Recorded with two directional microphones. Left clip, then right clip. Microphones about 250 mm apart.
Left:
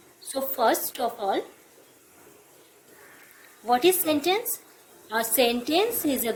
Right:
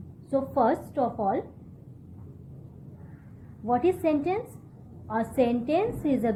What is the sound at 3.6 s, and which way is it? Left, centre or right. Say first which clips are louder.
A woman's voice: left 3 dB; left.